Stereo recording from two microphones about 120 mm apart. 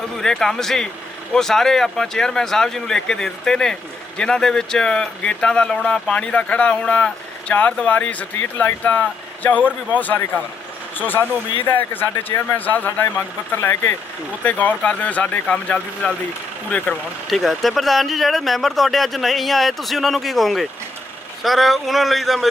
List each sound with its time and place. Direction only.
0.2 s speech: 5° left (ahead or behind)
17.2 s speech: centre (ahead or behind)